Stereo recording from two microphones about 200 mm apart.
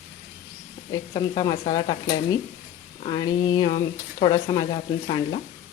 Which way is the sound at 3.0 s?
20° left (ahead or behind).